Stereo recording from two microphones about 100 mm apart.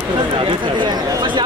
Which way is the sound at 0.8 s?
50° right (ahead or behind).